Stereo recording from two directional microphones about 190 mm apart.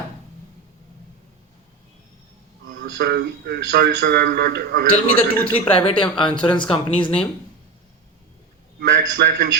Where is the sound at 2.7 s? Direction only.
60° right (ahead or behind).